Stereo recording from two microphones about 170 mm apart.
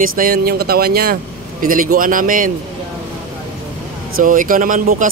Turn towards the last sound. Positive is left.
turn(degrees=-50)  # may be behind; listen again after turning